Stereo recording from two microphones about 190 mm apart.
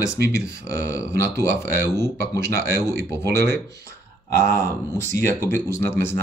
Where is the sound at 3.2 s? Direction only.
60° right (ahead or behind).